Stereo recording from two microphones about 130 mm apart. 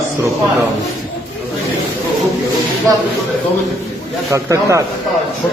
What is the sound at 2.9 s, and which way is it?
Speech, 25° right (ahead or behind).